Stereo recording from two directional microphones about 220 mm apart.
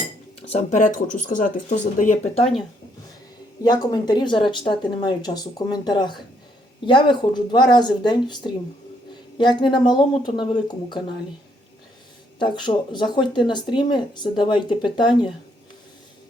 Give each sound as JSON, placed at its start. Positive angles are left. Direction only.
{"t": 0.4, "sound": "speech", "side_deg": 30}
{"t": 3.6, "sound": "speech", "side_deg": 20}
{"t": 12.4, "sound": "speech", "side_deg": 20}